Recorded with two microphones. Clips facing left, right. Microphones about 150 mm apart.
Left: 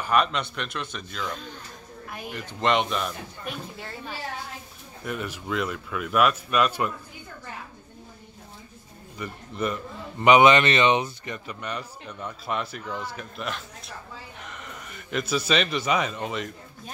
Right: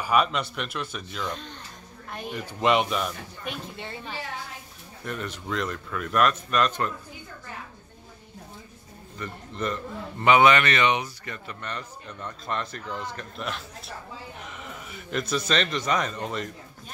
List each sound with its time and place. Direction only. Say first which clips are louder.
0.0 s a man's voice: even; 5° right (ahead or behind)
2.0 s a sound: right 2 dB; 5° left (ahead or behind)
2.3 s a man's voice: right 1 dB; 5° right (ahead or behind)
5.0 s speech: left 1 dB; 5° left (ahead or behind)
9.2 s speech: left 2 dB; 10° left (ahead or behind)
10.2 s a man's voice: left 2 dB; 20° left (ahead or behind); by 16.5 s 5° left (ahead or behind)